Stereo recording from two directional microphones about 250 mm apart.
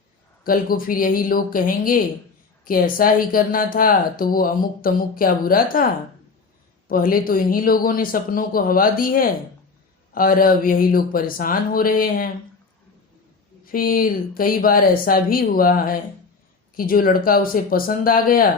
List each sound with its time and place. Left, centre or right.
0.4 s speech: left
13.7 s speech: left